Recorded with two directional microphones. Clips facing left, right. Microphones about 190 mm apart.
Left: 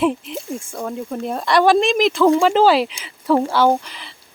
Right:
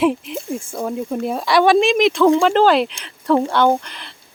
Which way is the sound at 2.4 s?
5° left (ahead or behind).